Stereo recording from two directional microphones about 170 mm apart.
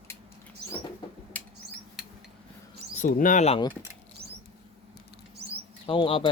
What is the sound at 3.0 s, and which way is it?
Speech, 50° left (ahead or behind).